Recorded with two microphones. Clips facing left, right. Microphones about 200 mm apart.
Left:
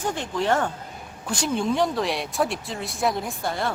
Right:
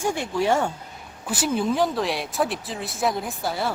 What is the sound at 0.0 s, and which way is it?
Speech, 10° right (ahead or behind).